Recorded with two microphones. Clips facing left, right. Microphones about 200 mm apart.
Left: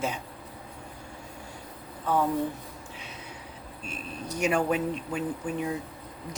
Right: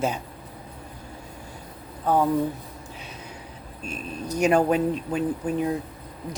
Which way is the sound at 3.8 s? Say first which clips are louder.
Right 5 dB; 40° right (ahead or behind).